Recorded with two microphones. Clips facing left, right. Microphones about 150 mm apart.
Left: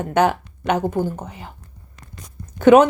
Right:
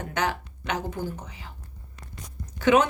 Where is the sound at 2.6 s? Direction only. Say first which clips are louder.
Left 9 dB; 50° left (ahead or behind).